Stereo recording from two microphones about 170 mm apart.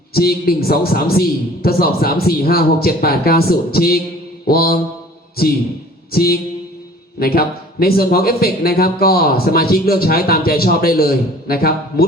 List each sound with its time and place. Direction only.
0.1 s a man's voice: 65° left (ahead or behind)
6.1 s a man's voice: 60° left (ahead or behind)